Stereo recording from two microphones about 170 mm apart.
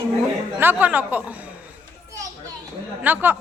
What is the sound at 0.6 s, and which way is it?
Speech, 10° right (ahead or behind).